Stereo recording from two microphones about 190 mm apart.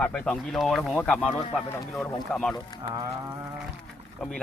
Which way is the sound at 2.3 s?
5° left (ahead or behind).